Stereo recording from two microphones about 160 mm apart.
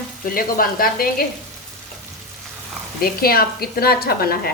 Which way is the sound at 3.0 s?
70° left (ahead or behind).